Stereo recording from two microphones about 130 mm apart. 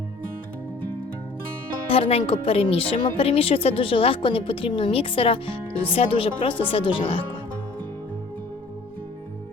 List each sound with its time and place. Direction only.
1.9 s speech: 50° left (ahead or behind)